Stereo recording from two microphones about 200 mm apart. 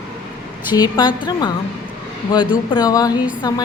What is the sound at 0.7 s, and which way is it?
Speech, 20° left (ahead or behind).